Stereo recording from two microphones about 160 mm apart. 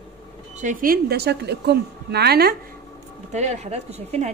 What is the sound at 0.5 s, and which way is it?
A woman's voice, 55° right (ahead or behind).